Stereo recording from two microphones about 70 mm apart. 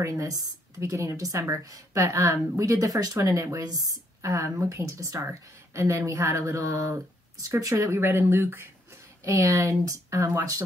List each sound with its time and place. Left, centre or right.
0.0 s speech: right
0.7 s speech: right
9.2 s speech: right